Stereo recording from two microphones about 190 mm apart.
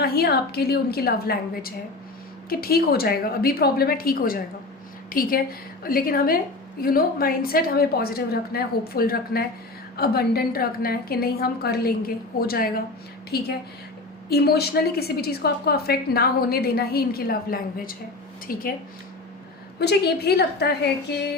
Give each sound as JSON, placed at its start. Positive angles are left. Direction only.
{"t": 0.0, "sound": "a woman's voice", "side_deg": 55}
{"t": 19.8, "sound": "a woman's voice", "side_deg": 55}